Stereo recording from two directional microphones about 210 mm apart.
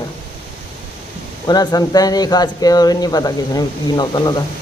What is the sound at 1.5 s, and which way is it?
Speech, 20° left (ahead or behind).